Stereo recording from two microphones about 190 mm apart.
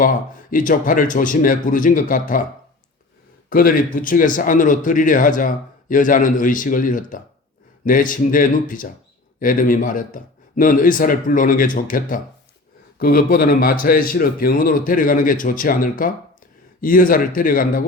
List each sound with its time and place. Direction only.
0.0 s speech: 45° left (ahead or behind)
3.5 s speech: 45° left (ahead or behind)